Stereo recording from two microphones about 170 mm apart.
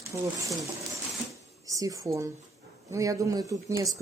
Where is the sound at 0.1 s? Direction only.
20° right (ahead or behind).